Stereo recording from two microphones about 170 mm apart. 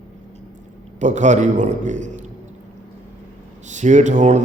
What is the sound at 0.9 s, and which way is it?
A man's voice, 45° right (ahead or behind).